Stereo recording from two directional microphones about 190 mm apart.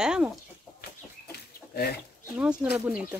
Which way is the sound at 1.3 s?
55° left (ahead or behind).